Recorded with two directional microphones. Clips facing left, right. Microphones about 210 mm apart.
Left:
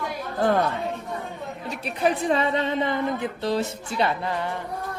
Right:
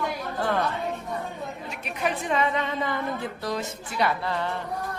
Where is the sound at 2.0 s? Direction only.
35° left (ahead or behind).